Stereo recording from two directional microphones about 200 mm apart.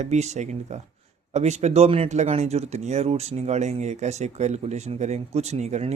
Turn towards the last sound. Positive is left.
turn(degrees=-35)  # may be behind; listen again after turning